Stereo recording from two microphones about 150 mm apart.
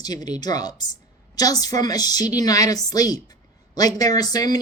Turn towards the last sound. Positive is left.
turn(degrees=25)  # may be behind; listen again after turning